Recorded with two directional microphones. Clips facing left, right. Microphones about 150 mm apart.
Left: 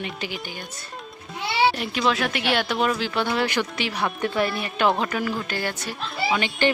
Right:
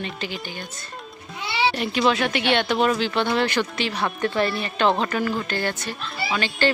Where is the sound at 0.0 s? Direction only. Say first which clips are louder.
Right 1 dB; 10° left (ahead or behind).